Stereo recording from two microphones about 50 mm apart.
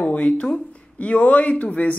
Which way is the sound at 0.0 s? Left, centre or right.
Left.